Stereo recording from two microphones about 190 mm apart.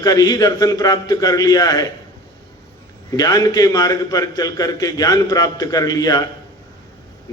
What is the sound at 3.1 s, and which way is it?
A man's voice, 20° left (ahead or behind).